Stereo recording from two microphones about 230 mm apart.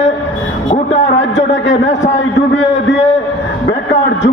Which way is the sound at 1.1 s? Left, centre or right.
Left.